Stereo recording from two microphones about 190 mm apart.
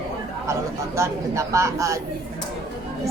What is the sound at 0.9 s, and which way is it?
Speech, 15° right (ahead or behind).